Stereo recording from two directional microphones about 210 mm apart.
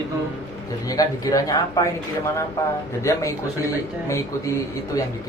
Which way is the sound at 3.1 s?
15° left (ahead or behind).